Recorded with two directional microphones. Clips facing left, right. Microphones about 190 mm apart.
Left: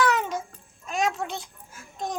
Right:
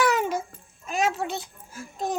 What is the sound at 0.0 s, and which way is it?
Music, 10° right (ahead or behind).